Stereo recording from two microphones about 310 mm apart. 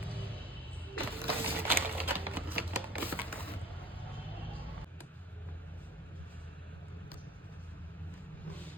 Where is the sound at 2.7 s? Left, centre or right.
Centre.